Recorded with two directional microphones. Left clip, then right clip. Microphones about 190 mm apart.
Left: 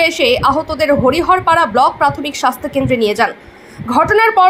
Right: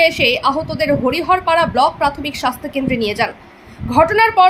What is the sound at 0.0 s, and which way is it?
A woman's voice, 15° left (ahead or behind).